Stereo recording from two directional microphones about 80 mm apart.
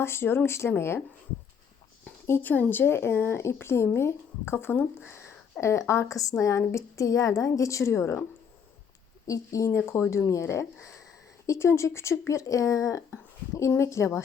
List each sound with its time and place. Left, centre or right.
0.0 s a woman's voice: left
2.2 s speech: left
5.5 s a woman's voice: left
9.2 s a woman's voice: left